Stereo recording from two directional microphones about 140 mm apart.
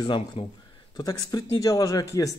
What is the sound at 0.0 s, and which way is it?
Speech, 35° left (ahead or behind).